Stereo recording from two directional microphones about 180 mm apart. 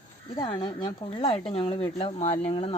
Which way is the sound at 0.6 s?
25° left (ahead or behind).